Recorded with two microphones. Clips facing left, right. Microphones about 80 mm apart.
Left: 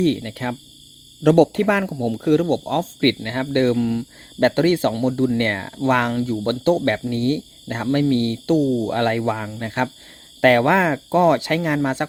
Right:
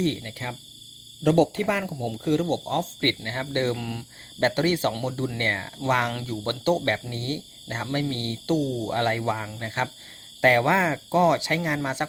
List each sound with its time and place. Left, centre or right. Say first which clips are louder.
0.0 s speech: left 7 dB; left
1.2 s speech: left 6 dB; left
1.8 s speech: left 7 dB; left
3.8 s speech: left 13 dB; left
4.4 s speech: left 6 dB; left
6.1 s speech: left 8 dB; left
10.4 s speech: left 5 dB; left
11.6 s speech: left 6 dB; left